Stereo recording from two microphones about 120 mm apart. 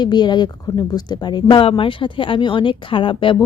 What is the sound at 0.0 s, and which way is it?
A woman's voice, 35° left (ahead or behind).